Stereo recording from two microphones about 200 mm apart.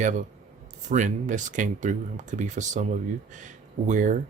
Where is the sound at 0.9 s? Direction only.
40° right (ahead or behind).